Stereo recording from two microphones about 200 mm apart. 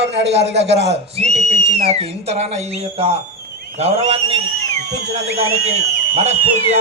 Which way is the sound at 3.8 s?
30° right (ahead or behind).